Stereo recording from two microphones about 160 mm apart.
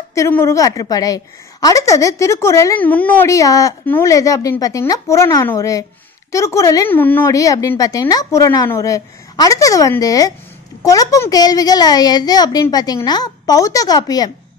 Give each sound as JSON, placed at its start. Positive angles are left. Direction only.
{"t": 0.1, "sound": "a woman's voice", "side_deg": 15}